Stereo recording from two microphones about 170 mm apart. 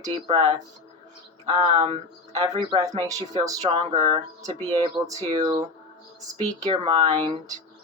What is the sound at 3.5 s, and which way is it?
A woman's voice, 35° right (ahead or behind).